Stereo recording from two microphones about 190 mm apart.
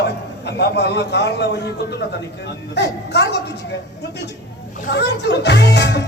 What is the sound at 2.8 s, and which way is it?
Speech, 65° left (ahead or behind).